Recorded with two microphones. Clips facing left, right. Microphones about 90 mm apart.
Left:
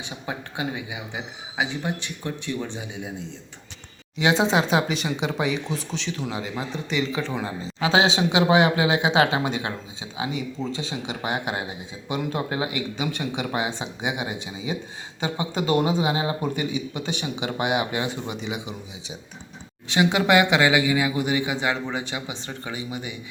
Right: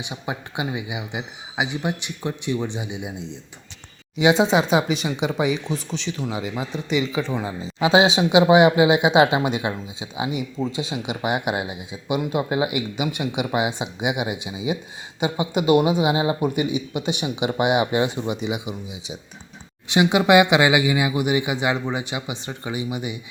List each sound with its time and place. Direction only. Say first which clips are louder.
0.0 s speech: right 3 dB; 15° right (ahead or behind)
4.2 s speech: right 3 dB; 5° right (ahead or behind)